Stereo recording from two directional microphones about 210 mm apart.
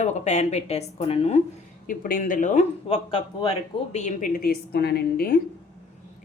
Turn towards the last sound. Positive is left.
turn(degrees=45)  # may be behind; listen again after turning